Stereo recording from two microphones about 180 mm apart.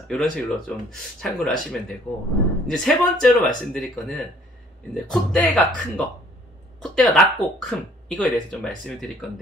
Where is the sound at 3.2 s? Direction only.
5° left (ahead or behind).